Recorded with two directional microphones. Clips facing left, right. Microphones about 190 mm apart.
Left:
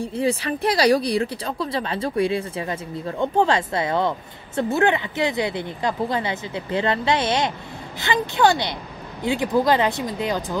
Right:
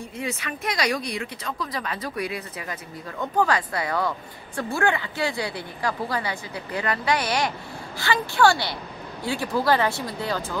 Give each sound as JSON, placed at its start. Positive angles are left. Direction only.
{"t": 0.0, "sound": "speech", "side_deg": 30}